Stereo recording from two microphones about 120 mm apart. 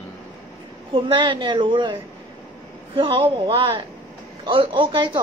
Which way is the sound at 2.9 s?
50° right (ahead or behind).